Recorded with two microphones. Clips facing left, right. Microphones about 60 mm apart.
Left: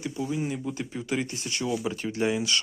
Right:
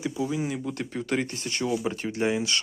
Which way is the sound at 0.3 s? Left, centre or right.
Right.